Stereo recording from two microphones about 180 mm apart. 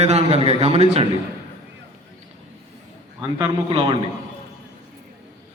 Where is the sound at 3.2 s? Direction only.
25° right (ahead or behind).